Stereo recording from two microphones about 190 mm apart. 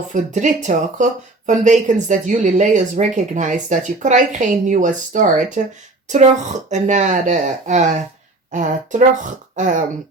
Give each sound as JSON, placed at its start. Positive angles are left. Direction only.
{"t": 0.1, "sound": "speech", "side_deg": -40}